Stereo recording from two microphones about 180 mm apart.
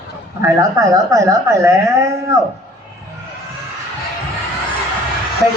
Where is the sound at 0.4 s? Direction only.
15° right (ahead or behind).